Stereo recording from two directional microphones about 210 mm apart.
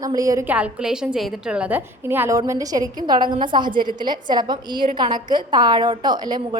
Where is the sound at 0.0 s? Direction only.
15° right (ahead or behind).